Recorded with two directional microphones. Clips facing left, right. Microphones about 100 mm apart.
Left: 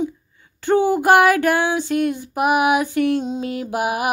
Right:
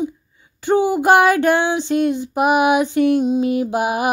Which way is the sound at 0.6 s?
15° right (ahead or behind).